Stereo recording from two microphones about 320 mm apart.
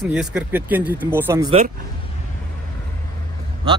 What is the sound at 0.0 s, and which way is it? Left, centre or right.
Speech, centre.